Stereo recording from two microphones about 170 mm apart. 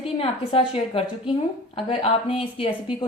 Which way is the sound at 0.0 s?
30° left (ahead or behind).